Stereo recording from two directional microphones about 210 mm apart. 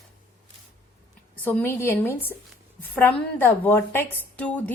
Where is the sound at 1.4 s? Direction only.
10° left (ahead or behind).